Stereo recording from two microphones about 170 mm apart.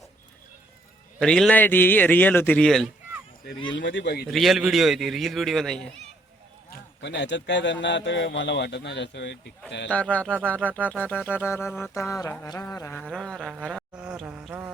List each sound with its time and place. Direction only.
1.2 s a sound: 5° left (ahead or behind)
3.8 s a man's voice: 90° left
4.3 s speech: centre (ahead or behind)
6.7 s a man's voice: 90° left
9.9 s a sound: 10° left (ahead or behind)
13.9 s insect: 5° right (ahead or behind)